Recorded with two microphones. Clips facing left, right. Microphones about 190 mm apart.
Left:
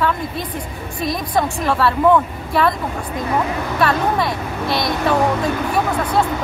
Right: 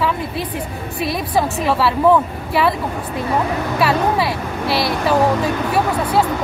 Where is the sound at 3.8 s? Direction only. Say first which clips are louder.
Right 1 dB; 5° right (ahead or behind).